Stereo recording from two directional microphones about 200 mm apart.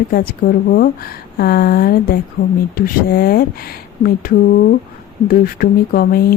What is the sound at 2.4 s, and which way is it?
Speech, 65° left (ahead or behind).